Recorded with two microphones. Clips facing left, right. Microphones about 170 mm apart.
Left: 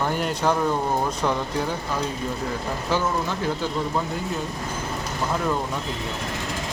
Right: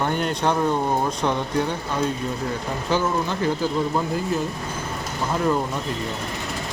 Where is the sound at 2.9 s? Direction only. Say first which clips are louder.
Right 2 dB; centre (ahead or behind).